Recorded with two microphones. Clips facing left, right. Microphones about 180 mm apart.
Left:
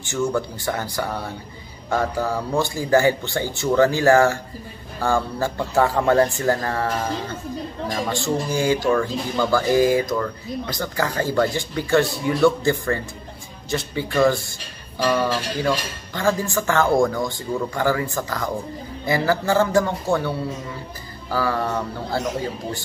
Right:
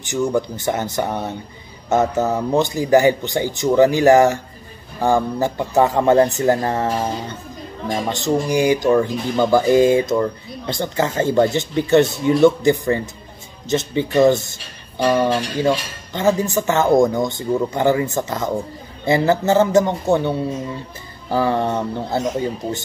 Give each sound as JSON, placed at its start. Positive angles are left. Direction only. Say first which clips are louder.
{"t": 0.0, "sound": "speech", "louder": "right 3 dB", "side_deg": -15}
{"t": 7.9, "sound": "speech", "louder": "right 4 dB", "side_deg": -20}